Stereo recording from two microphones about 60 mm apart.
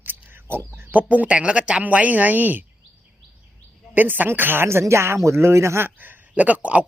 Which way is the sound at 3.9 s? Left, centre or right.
Right.